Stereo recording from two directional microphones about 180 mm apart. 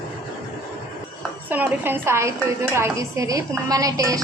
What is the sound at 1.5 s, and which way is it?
A woman's voice, 10° right (ahead or behind).